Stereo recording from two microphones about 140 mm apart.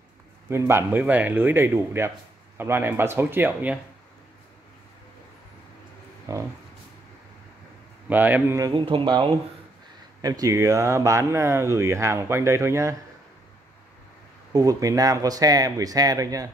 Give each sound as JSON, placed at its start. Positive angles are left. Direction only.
{"t": 0.5, "sound": "speech", "side_deg": -20}
{"t": 6.3, "sound": "speech", "side_deg": -25}
{"t": 8.1, "sound": "speech", "side_deg": -10}
{"t": 8.5, "sound": "speech", "side_deg": -25}
{"t": 8.8, "sound": "speech", "side_deg": -35}
{"t": 14.5, "sound": "speech", "side_deg": -25}